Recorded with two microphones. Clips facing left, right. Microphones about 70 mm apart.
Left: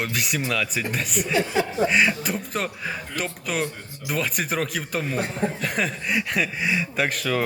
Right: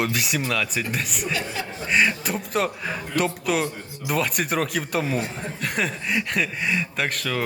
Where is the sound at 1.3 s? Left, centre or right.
Left.